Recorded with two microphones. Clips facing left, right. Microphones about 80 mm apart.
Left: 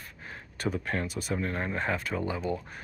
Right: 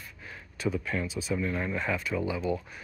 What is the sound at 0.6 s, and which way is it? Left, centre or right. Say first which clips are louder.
Speech: even; left.